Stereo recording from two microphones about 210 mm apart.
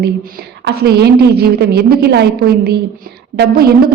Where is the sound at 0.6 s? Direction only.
50° right (ahead or behind).